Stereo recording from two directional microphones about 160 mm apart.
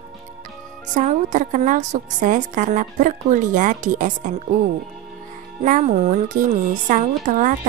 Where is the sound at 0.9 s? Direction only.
50° right (ahead or behind).